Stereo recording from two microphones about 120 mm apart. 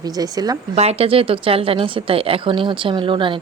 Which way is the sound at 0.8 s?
55° right (ahead or behind).